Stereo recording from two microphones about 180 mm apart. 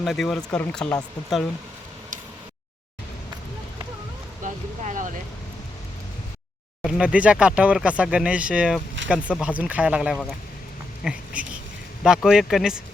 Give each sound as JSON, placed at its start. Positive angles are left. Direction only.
{"t": 0.0, "sound": "speech", "side_deg": 0}
{"t": 4.4, "sound": "vehicle", "side_deg": -45}
{"t": 6.8, "sound": "speech", "side_deg": -5}